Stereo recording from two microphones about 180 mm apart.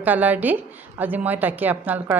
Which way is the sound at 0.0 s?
10° right (ahead or behind).